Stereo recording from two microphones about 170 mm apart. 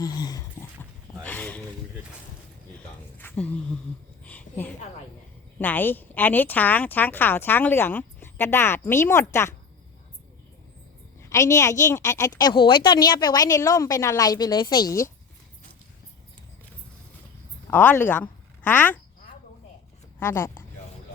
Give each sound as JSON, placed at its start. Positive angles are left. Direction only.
{"t": 0.0, "sound": "dog", "side_deg": 20}
{"t": 1.2, "sound": "speech", "side_deg": 10}
{"t": 3.2, "sound": "a sound", "side_deg": 10}
{"t": 5.5, "sound": "a woman's voice", "side_deg": 10}
{"t": 11.3, "sound": "a woman's voice", "side_deg": 15}
{"t": 17.7, "sound": "a woman's voice", "side_deg": 10}
{"t": 20.1, "sound": "speech", "side_deg": 15}